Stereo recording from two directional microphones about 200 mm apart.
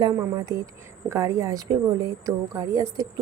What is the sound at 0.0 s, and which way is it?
Speech, 15° right (ahead or behind).